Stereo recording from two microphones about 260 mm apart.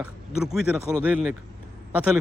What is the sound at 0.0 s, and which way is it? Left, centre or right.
Speech, centre.